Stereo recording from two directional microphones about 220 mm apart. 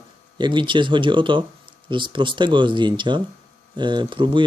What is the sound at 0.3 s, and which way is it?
Speech, 20° right (ahead or behind).